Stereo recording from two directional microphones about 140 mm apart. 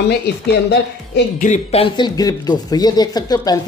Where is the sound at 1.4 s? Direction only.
60° left (ahead or behind).